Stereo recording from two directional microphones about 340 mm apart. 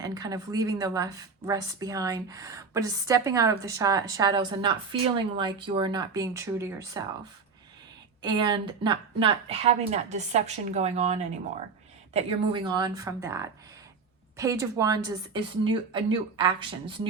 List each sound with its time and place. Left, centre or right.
0.0 s a woman's voice: centre
8.2 s a woman's voice: centre